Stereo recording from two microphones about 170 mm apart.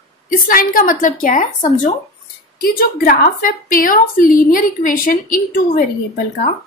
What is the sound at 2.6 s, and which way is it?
A woman's voice, 60° left (ahead or behind).